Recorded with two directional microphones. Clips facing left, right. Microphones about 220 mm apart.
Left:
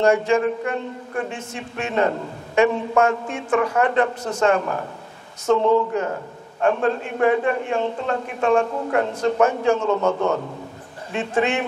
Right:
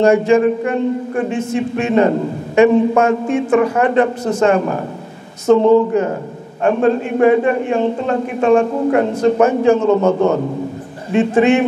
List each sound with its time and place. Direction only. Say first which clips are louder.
0.0 s a man's voice: right 6 dB; 10° right (ahead or behind)
5.6 s speech: right 7 dB; 40° right (ahead or behind)
5.9 s a man's voice: right 7 dB; 15° right (ahead or behind)